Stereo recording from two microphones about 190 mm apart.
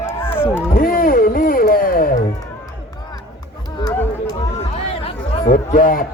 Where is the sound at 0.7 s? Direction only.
50° left (ahead or behind).